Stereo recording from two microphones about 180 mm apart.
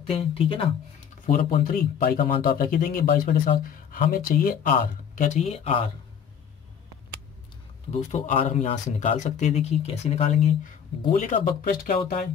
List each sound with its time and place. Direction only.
0.0 s speech: 30° left (ahead or behind)
1.3 s speech: 50° left (ahead or behind); by 5.9 s 35° left (ahead or behind)
8.1 s speech: 40° left (ahead or behind)